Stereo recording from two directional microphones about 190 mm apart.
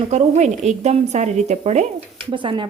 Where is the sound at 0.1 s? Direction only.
35° right (ahead or behind).